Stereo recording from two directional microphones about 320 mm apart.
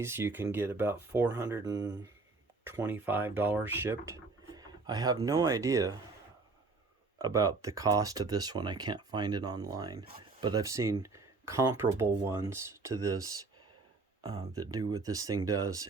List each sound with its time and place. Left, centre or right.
0.0 s speech: centre
7.2 s speech: centre